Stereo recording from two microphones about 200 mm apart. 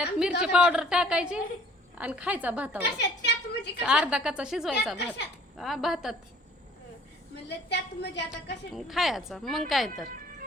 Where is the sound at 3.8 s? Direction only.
5° right (ahead or behind).